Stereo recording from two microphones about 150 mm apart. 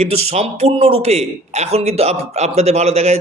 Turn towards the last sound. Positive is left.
turn(degrees=-45)  # may be behind; listen again after turning